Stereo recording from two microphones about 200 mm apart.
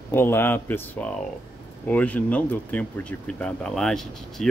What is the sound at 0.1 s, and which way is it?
Speech, 10° left (ahead or behind).